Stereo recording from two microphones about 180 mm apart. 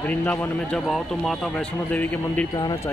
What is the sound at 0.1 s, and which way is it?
A man's voice, 10° left (ahead or behind).